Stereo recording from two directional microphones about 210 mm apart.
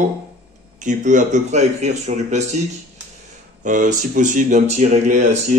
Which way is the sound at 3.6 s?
35° right (ahead or behind).